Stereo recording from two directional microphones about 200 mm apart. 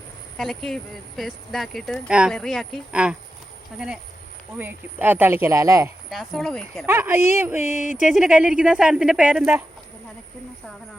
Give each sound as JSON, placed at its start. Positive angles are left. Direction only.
{"t": 0.3, "sound": "speech", "side_deg": 0}
{"t": 4.5, "sound": "speech", "side_deg": -10}
{"t": 6.1, "sound": "speech", "side_deg": 0}
{"t": 6.8, "sound": "speech", "side_deg": -10}
{"t": 7.6, "sound": "a sound", "side_deg": 35}
{"t": 7.9, "sound": "speech", "side_deg": -5}